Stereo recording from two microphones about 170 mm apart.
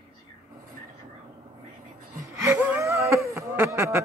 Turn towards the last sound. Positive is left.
turn(degrees=-15)  # may be behind; listen again after turning